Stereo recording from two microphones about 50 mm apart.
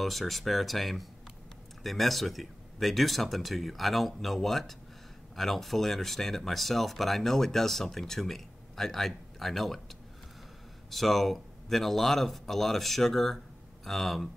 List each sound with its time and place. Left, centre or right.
0.0 s speech: centre